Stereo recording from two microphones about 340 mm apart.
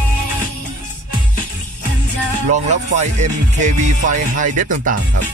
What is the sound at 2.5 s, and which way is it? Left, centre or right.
Music, right.